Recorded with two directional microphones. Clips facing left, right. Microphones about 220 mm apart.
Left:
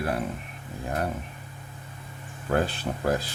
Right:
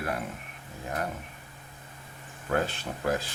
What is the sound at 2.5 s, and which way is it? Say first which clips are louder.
Speech: left 3 dB; 35° left (ahead or behind).